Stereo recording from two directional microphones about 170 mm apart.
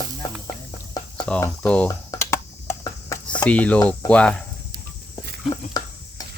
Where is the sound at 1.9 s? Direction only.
15° left (ahead or behind).